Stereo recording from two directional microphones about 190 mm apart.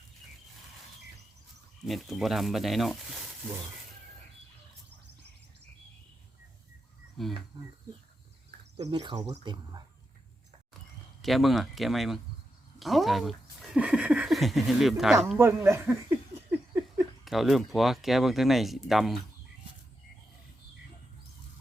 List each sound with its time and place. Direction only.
1.8 s speech: centre (ahead or behind)
7.2 s speech: centre (ahead or behind)
7.5 s speech: 20° right (ahead or behind)
8.9 s speech: 20° right (ahead or behind)
11.2 s speech: centre (ahead or behind)
15.4 s a sound: 15° right (ahead or behind)
17.2 s speech: centre (ahead or behind)